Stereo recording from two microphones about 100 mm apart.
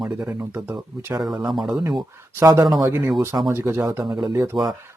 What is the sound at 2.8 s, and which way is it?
Speech, 25° right (ahead or behind).